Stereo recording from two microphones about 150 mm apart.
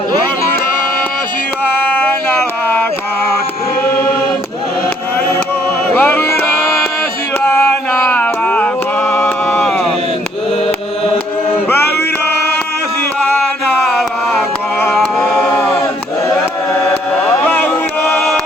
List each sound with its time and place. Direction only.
5.9 s music: 10° left (ahead or behind)
7.4 s mantra: 15° left (ahead or behind)
13.2 s mantra: 10° left (ahead or behind)
14.8 s a sound: 5° left (ahead or behind)
16.9 s chant: 10° left (ahead or behind)